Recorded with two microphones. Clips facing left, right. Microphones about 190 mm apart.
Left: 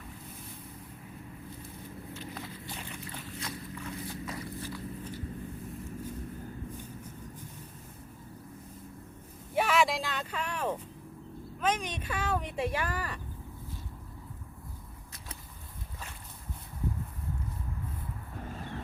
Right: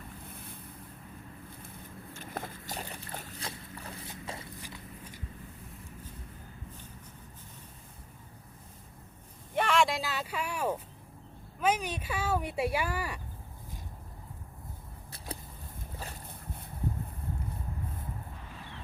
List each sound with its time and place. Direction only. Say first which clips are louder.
2.1 s boat: right 4 dB; 50° right (ahead or behind); by 4.1 s 30° right (ahead or behind)
4.1 s zipper: left 3 dB; 25° right (ahead or behind)
4.6 s walk: left 8 dB; 15° right (ahead or behind)
9.6 s a sound: even; 5° left (ahead or behind)
11.6 s speech: right 2 dB; 10° right (ahead or behind)
18.5 s vehicle: left 9 dB; 45° left (ahead or behind)